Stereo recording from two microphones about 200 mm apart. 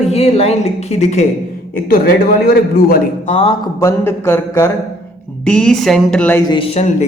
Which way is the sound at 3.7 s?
15° left (ahead or behind).